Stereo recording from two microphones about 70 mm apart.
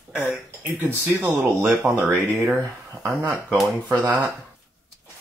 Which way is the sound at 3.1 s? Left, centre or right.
Centre.